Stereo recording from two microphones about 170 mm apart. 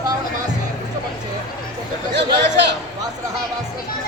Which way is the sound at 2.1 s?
90° right.